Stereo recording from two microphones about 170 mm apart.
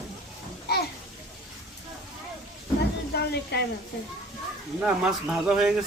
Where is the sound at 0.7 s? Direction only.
70° left (ahead or behind).